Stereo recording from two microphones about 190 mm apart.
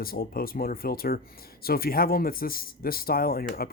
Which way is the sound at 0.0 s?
50° left (ahead or behind).